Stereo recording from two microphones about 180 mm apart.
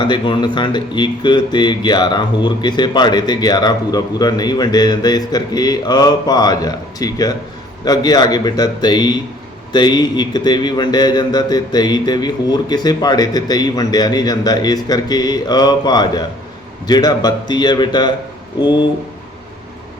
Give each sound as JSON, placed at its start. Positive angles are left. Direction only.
{"t": 0.0, "sound": "speech", "side_deg": 25}